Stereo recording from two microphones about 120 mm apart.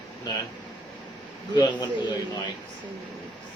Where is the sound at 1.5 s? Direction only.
35° left (ahead or behind).